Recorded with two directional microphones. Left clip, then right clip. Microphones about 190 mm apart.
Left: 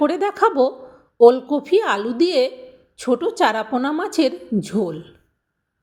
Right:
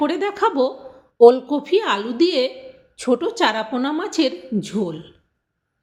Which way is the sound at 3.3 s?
30° left (ahead or behind).